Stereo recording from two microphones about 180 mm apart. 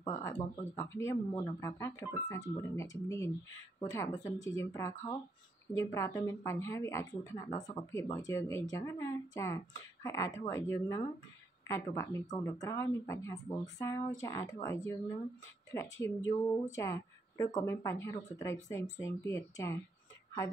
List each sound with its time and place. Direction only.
0.2 s a woman's voice: 20° left (ahead or behind)